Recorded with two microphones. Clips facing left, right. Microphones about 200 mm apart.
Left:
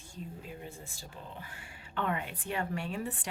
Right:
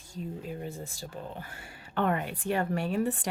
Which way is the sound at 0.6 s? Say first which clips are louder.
Right 7 dB; 40° right (ahead or behind).